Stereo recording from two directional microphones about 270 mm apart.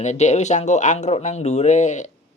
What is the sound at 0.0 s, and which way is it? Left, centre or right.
Speech, left.